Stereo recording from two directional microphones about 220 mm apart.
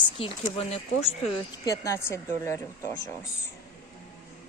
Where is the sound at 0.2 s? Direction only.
25° left (ahead or behind).